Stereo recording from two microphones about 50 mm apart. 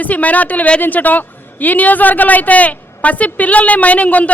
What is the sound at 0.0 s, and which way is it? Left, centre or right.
A man's voice, left.